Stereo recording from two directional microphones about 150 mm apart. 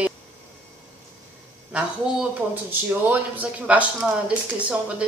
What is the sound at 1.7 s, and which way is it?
Speech, 10° right (ahead or behind).